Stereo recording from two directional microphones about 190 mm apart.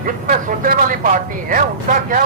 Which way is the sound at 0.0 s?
45° right (ahead or behind).